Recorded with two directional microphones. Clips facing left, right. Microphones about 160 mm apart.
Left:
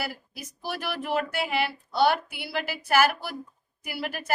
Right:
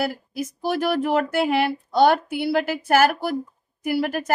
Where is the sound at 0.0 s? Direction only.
50° right (ahead or behind).